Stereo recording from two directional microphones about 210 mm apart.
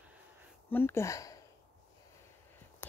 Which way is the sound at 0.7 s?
10° left (ahead or behind).